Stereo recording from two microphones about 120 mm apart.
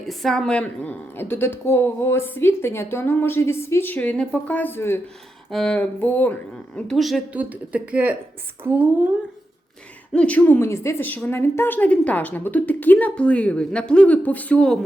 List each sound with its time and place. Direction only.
0.0 s a woman's voice: centre (ahead or behind); by 4.9 s 20° left (ahead or behind)
5.5 s speech: 5° left (ahead or behind)
6.7 s speech: centre (ahead or behind)
7.3 s speech: 15° right (ahead or behind)
10.1 s speech: 10° left (ahead or behind)